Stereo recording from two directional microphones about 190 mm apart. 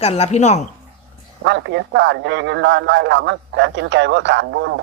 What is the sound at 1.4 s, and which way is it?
A man's voice, 70° right (ahead or behind).